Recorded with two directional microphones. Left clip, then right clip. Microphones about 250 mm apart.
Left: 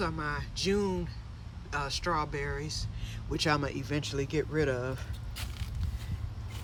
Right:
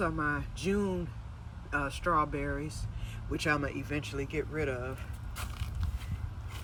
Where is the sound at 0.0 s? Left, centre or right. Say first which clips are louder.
Right 2 dB; centre.